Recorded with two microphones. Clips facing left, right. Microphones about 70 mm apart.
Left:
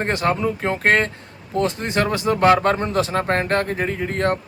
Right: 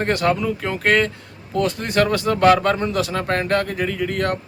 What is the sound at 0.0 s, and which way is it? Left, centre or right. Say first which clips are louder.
Speech: right 1 dB; left.